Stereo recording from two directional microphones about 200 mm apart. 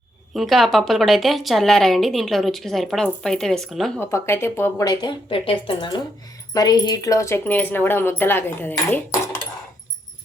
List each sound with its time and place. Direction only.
0.3 s a woman's voice: centre (ahead or behind)
4.0 s speech: 10° left (ahead or behind)